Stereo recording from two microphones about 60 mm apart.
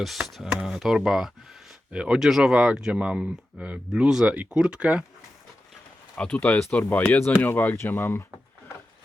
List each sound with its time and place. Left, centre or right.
0.0 s speech: centre
1.9 s speech: centre
2.1 s speech: centre
6.1 s speech: centre; by 8.2 s left